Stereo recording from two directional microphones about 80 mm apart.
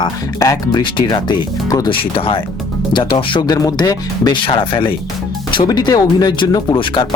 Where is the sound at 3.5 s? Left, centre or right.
Left.